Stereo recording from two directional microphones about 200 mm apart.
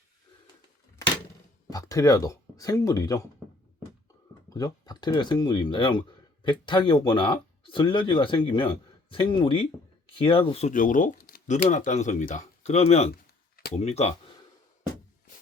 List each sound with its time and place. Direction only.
1.7 s speech: 15° left (ahead or behind)
4.4 s speech: 20° left (ahead or behind)